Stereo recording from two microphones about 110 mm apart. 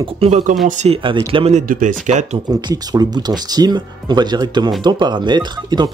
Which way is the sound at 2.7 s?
35° right (ahead or behind).